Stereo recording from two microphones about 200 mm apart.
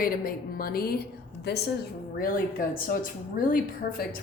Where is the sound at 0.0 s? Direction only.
45° left (ahead or behind).